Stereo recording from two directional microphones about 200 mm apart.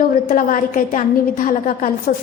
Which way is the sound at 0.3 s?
45° left (ahead or behind).